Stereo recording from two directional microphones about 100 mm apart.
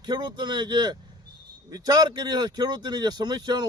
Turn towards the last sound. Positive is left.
turn(degrees=-45)  # may be behind; listen again after turning